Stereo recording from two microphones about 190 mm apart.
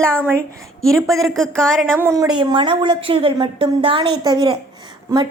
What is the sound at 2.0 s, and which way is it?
A woman's voice, 15° right (ahead or behind).